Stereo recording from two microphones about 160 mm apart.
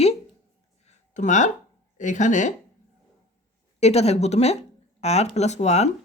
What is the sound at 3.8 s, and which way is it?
Speech, 40° left (ahead or behind).